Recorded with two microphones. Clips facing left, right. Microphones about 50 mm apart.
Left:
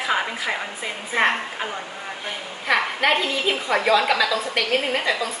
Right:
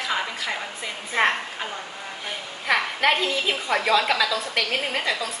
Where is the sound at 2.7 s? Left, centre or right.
Centre.